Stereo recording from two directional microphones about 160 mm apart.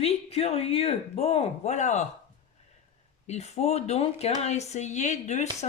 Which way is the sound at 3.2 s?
40° left (ahead or behind).